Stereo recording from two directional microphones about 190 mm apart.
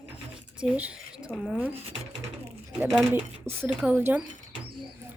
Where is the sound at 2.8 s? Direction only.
5° right (ahead or behind).